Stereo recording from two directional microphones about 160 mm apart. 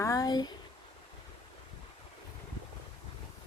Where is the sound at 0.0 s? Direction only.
20° left (ahead or behind).